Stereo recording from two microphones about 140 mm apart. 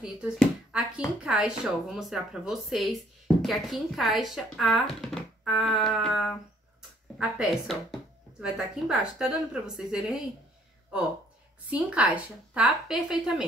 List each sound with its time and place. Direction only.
0.0 s speech: 5° right (ahead or behind)
11.7 s a woman's voice: 10° right (ahead or behind)